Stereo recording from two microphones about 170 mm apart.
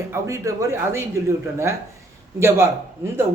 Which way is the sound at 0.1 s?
20° right (ahead or behind).